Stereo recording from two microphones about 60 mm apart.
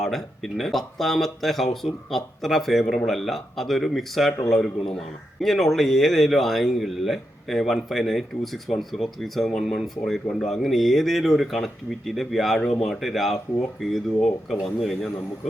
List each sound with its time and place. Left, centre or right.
0.0 s speech: centre